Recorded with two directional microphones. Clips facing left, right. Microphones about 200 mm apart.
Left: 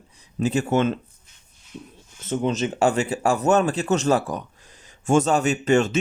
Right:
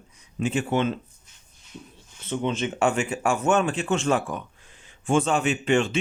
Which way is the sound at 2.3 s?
40° left (ahead or behind).